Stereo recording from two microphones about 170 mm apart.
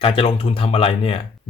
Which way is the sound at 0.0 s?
35° left (ahead or behind).